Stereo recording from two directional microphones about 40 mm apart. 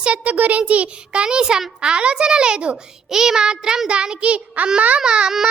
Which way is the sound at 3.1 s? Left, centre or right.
Centre.